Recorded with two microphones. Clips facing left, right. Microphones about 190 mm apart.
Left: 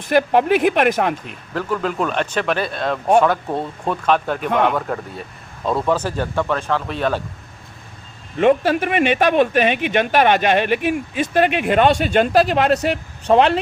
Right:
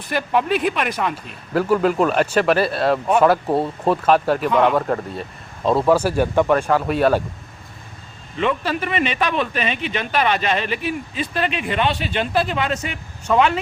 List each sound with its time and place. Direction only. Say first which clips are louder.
0.1 s speech: left 5 dB; 50° left (ahead or behind)
1.1 s speech: right 4 dB; 10° right (ahead or behind)
8.4 s speech: left 6 dB; 50° left (ahead or behind)
12.5 s speech: left 7 dB; 65° left (ahead or behind)
13.2 s speech: left 3 dB; 35° left (ahead or behind)